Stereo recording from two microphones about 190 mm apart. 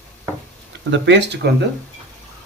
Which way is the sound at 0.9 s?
65° right (ahead or behind).